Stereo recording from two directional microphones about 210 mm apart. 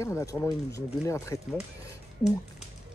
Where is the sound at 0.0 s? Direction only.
15° left (ahead or behind).